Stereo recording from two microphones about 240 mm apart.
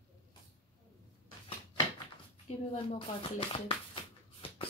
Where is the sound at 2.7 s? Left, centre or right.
Left.